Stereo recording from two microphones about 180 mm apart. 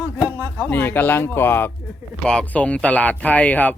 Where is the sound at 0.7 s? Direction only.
10° left (ahead or behind).